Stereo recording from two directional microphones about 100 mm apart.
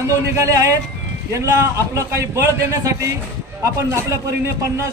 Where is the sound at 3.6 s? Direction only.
30° right (ahead or behind).